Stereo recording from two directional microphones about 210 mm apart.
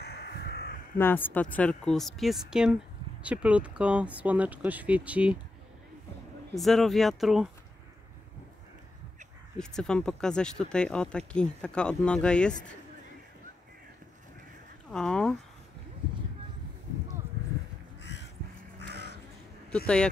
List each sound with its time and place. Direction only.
0.0 s crow: 50° left (ahead or behind)
0.9 s speech: 10° left (ahead or behind); by 5.4 s 5° right (ahead or behind)
6.5 s speech: centre (ahead or behind)
9.6 s speech: 5° left (ahead or behind)
14.9 s a sound: 5° left (ahead or behind)
18.0 s crow: 55° left (ahead or behind)